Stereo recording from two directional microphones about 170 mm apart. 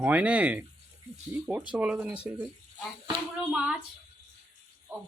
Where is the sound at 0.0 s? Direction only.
10° right (ahead or behind).